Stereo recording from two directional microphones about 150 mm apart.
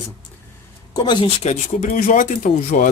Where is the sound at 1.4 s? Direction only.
50° left (ahead or behind).